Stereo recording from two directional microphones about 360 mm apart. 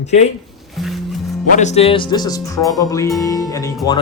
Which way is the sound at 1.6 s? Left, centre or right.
Centre.